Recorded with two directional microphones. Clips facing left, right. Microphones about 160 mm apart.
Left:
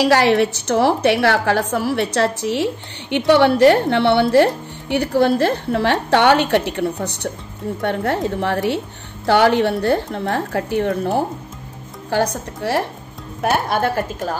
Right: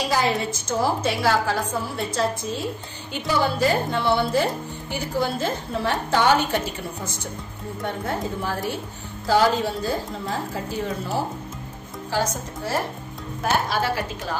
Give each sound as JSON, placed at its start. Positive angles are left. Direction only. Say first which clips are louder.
{"t": 0.0, "sound": "a woman's voice", "louder": "left 9 dB", "side_deg": 75}